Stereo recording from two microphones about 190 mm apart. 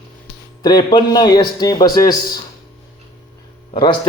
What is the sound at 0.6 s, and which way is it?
A man's voice, 20° left (ahead or behind).